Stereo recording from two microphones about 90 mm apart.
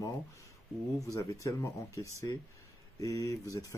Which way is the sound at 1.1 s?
40° left (ahead or behind).